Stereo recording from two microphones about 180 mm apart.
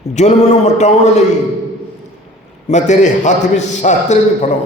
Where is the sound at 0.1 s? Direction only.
40° left (ahead or behind).